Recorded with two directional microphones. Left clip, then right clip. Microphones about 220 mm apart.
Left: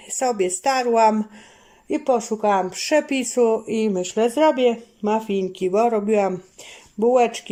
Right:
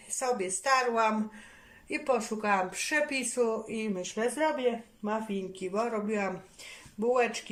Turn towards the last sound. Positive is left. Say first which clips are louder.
# left 10 dB
turn(degrees=35)  # may be behind; listen again after turning